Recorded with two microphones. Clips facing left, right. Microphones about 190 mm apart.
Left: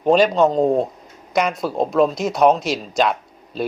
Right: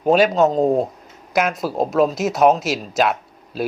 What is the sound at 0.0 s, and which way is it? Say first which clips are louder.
Speech: even; 5° right (ahead or behind).